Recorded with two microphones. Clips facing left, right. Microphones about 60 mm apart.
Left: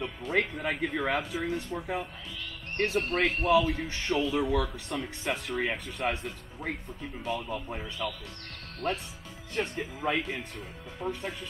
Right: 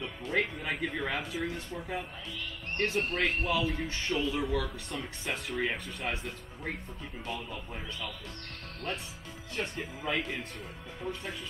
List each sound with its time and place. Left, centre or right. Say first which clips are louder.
0.0 s speech: left 2 dB; centre
8.0 s speech: left 5 dB; centre